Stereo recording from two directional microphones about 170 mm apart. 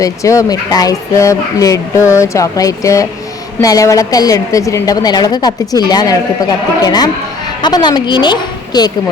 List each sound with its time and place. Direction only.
0.0 s a woman's voice: 20° left (ahead or behind)